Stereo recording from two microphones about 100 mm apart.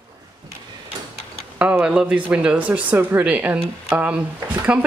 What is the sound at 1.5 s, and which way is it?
Speech, 20° right (ahead or behind).